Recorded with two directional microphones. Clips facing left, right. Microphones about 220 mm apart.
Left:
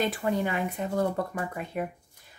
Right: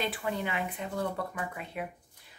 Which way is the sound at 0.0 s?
45° left (ahead or behind).